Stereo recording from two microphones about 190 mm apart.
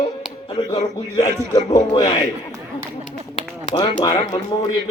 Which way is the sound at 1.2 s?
20° left (ahead or behind).